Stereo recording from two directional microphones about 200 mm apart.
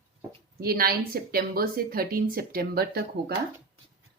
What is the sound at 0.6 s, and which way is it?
Speech, 50° right (ahead or behind).